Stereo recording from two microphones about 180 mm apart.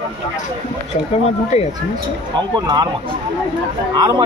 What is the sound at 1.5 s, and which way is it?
Speech, 35° left (ahead or behind).